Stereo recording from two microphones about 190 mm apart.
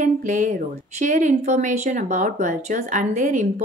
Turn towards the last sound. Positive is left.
turn(degrees=-40)  # may be behind; listen again after turning